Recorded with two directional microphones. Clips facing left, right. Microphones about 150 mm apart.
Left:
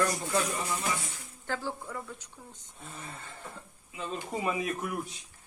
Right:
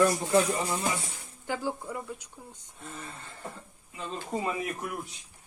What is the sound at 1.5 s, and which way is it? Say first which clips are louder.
Speech: right 3 dB; 15° right (ahead or behind).